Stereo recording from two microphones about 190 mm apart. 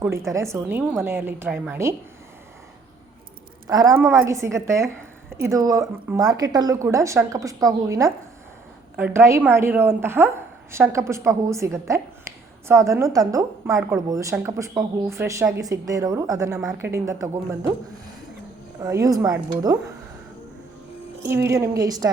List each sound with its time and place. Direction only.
0.0 s a woman's voice: 15° right (ahead or behind)
3.7 s a woman's voice: 20° right (ahead or behind)
18.8 s a woman's voice: 20° right (ahead or behind)
21.2 s a woman's voice: 15° right (ahead or behind)